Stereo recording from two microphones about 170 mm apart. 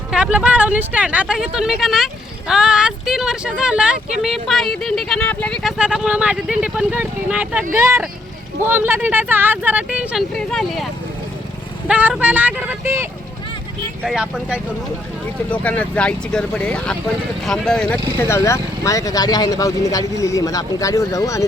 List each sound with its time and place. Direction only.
0.1 s speech: 5° right (ahead or behind)
5.7 s speech: 5° right (ahead or behind)
11.9 s speech: 5° right (ahead or behind)
14.0 s speech: 5° right (ahead or behind)
15.4 s speech: 10° left (ahead or behind)
18.2 s speech: 15° left (ahead or behind)